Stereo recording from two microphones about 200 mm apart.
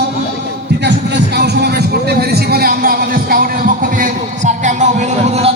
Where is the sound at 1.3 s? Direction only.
55° right (ahead or behind); by 5.5 s 30° right (ahead or behind).